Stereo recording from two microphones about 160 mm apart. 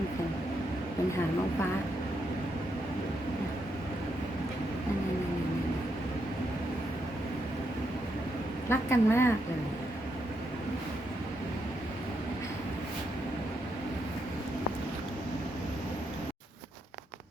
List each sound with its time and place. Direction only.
8.7 s a woman's voice: 15° left (ahead or behind)